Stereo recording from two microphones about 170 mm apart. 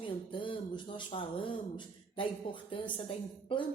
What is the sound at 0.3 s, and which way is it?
Speech, 30° left (ahead or behind).